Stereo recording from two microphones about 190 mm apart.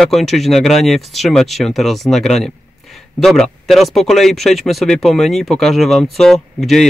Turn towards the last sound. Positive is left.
turn(degrees=0)  # may be behind; listen again after turning